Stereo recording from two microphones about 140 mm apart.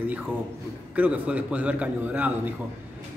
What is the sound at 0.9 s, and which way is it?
A man's voice, 10° right (ahead or behind).